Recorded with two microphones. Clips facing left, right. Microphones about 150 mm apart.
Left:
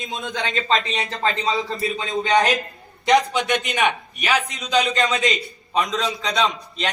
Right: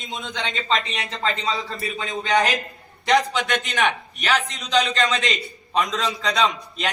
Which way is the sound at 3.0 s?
15° left (ahead or behind).